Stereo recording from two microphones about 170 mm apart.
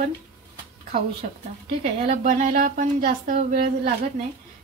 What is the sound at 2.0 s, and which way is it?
A woman's voice, 40° right (ahead or behind).